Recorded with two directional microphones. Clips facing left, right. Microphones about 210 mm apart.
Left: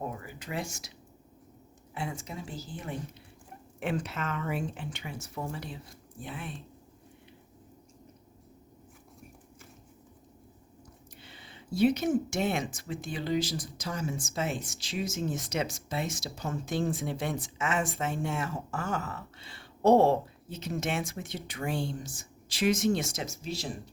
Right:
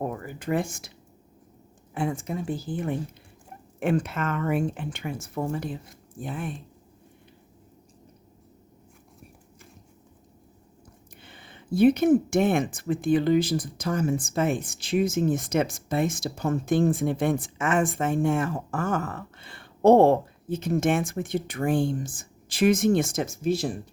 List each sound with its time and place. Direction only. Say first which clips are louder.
0.0 s a sound: right 7 dB; 55° right (ahead or behind)
1.9 s speech: right 9 dB; 50° right (ahead or behind)
11.2 s speech: right 3 dB; 55° right (ahead or behind)